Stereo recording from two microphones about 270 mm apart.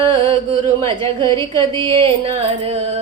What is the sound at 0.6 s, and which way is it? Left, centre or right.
Music, centre.